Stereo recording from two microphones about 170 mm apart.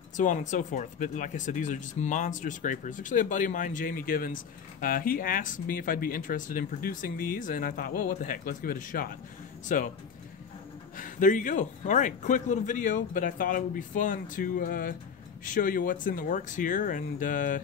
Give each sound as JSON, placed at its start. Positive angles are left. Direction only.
{"t": 0.2, "sound": "speech", "side_deg": 45}
{"t": 11.0, "sound": "speech", "side_deg": 50}